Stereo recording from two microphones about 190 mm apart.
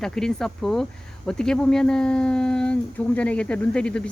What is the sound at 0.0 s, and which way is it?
Speech, 5° left (ahead or behind).